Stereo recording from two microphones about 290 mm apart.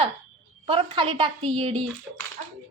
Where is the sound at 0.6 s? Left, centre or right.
Centre.